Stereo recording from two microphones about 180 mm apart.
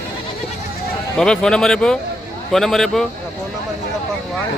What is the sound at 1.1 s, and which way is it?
Speech, 5° left (ahead or behind).